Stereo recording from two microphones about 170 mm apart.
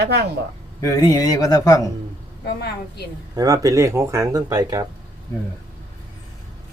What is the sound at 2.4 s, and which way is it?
Speech, 75° left (ahead or behind).